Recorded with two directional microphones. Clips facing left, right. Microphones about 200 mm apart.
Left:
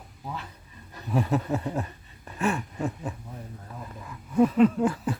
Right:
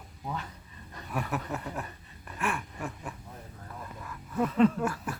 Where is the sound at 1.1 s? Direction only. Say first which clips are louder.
Left 8 dB; 25° left (ahead or behind).